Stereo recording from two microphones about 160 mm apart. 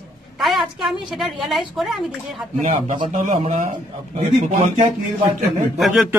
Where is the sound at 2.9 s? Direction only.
50° right (ahead or behind).